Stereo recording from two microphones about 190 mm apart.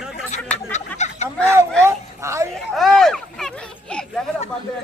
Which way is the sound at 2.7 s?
Centre (ahead or behind).